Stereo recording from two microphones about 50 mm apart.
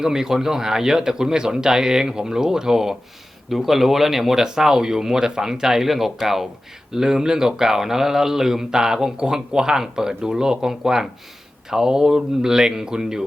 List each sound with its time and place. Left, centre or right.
0.0 s speech: centre